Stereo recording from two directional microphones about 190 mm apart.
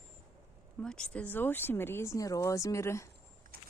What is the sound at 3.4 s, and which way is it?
Vehicle, 45° right (ahead or behind).